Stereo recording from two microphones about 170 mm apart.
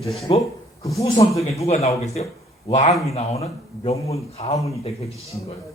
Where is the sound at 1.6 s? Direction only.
40° left (ahead or behind).